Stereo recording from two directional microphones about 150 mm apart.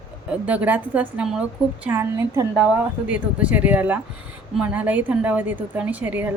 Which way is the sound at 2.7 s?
10° right (ahead or behind).